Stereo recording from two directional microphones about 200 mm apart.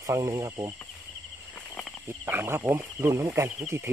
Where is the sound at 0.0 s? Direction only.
15° right (ahead or behind).